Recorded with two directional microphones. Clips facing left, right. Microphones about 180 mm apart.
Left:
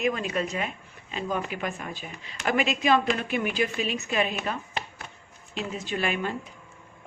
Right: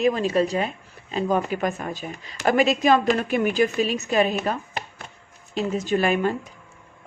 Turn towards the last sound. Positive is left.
turn(degrees=-40)  # may be behind; listen again after turning